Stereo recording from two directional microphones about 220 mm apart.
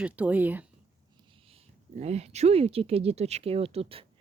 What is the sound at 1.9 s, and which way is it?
Speech, 30° right (ahead or behind).